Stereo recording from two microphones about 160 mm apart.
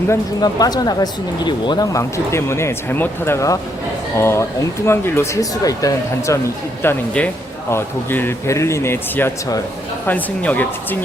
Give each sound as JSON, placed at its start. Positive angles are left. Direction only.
{"t": 0.1, "sound": "speech", "side_deg": 25}
{"t": 6.8, "sound": "speech", "side_deg": 10}